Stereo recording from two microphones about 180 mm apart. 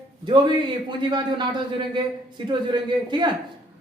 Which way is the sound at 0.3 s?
25° right (ahead or behind).